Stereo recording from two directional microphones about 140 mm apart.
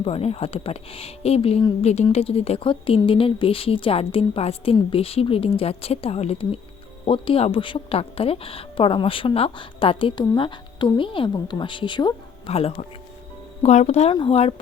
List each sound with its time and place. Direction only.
0.0 s a woman's voice: 45° left (ahead or behind)
14.1 s a woman's voice: 40° left (ahead or behind)